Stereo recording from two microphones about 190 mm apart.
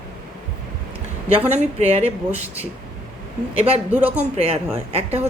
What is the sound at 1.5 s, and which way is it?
Speech, 35° right (ahead or behind).